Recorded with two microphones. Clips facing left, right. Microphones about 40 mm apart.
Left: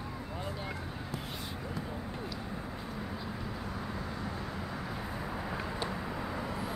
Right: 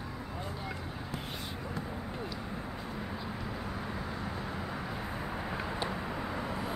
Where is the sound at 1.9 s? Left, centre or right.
Centre.